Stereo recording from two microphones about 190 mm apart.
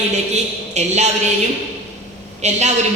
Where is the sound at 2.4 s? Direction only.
35° right (ahead or behind).